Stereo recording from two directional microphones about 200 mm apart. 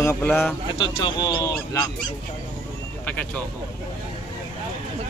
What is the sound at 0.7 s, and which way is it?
Speech, 25° left (ahead or behind).